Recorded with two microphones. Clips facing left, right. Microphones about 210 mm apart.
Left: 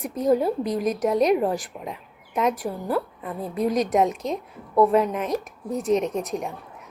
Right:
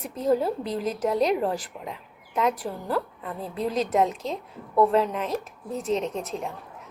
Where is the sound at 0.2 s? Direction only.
15° left (ahead or behind).